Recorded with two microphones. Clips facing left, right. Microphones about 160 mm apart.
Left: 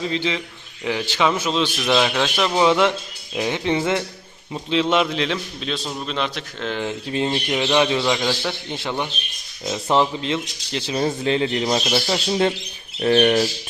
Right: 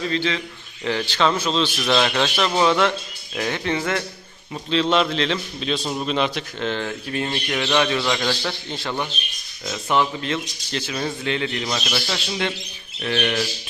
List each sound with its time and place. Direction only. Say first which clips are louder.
0.0 s a man's voice: even; 20° left (ahead or behind); by 2.6 s centre (ahead or behind)
2.6 s a man's voice: left 2 dB; 15° left (ahead or behind); by 6.7 s centre (ahead or behind)
6.7 s speech: left 2 dB; 20° left (ahead or behind)
9.6 s speech: left 2 dB; 30° left (ahead or behind)
10.2 s speech: left 2 dB; 20° left (ahead or behind)
10.8 s speech: left 6 dB; 30° left (ahead or behind)